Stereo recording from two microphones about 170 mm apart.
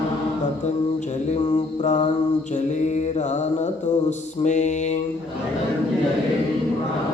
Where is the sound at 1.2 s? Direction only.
40° left (ahead or behind).